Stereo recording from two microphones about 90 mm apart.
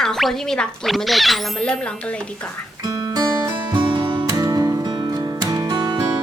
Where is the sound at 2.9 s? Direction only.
45° right (ahead or behind).